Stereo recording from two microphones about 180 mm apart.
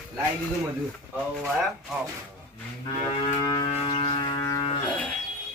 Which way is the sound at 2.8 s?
25° left (ahead or behind).